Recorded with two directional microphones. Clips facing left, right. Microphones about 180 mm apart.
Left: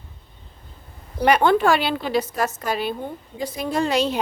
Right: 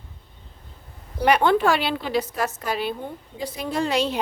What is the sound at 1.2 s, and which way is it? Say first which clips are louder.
A woman's voice: left 1 dB; 45° left (ahead or behind).